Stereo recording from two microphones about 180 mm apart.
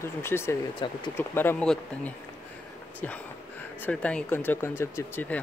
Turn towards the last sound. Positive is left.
turn(degrees=10)  # may be behind; listen again after turning